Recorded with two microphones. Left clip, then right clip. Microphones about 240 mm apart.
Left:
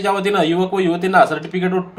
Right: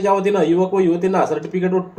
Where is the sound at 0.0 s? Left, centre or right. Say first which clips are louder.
Right 1 dB; left.